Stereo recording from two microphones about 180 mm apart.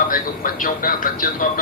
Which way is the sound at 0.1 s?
50° left (ahead or behind).